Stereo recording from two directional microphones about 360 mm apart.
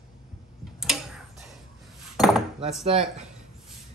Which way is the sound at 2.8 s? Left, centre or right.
Centre.